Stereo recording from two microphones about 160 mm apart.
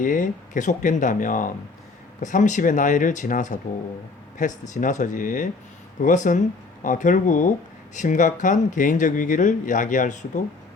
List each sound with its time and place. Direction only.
0.0 s speech: 55° left (ahead or behind)